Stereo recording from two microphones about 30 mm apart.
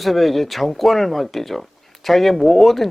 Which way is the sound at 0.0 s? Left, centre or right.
Centre.